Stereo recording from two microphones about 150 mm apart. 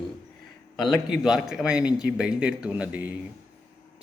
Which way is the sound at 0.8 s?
Centre (ahead or behind).